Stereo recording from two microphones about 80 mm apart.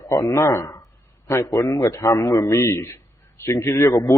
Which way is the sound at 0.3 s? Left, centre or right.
Left.